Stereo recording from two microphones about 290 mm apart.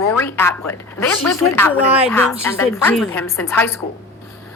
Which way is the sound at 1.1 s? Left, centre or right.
Left.